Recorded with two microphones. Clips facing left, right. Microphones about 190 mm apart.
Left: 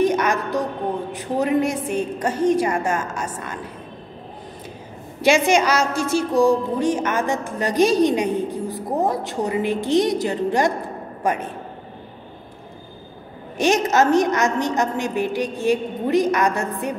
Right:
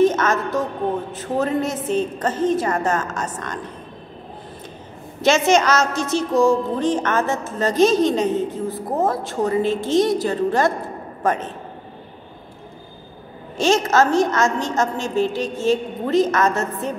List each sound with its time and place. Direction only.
0.0 s a sound: 15° left (ahead or behind)
1.1 s a woman's voice: 15° left (ahead or behind)
5.2 s a woman's voice: 10° left (ahead or behind)
13.6 s a woman's voice: 15° left (ahead or behind)